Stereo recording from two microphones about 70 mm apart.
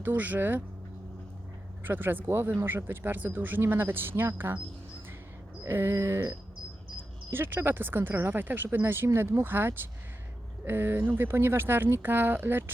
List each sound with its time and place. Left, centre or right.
0.0 s speech: right
1.8 s speech: right
5.6 s speech: right